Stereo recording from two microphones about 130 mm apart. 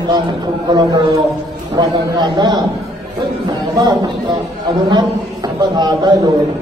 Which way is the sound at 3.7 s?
30° right (ahead or behind).